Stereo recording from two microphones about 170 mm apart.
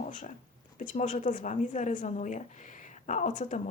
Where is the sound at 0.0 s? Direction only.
45° left (ahead or behind).